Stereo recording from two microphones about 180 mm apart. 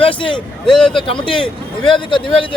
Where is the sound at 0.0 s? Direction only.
30° left (ahead or behind).